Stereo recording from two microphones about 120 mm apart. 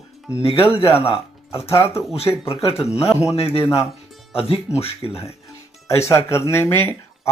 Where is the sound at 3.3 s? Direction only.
55° left (ahead or behind).